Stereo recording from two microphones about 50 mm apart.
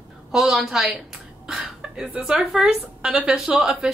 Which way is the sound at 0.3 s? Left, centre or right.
Centre.